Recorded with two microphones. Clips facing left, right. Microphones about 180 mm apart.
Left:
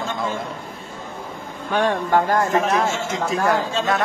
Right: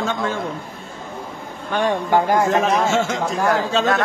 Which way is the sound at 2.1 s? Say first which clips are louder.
Right 3 dB; 15° right (ahead or behind).